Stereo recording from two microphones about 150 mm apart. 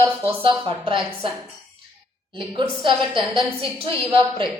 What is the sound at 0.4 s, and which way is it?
Speech, 35° right (ahead or behind).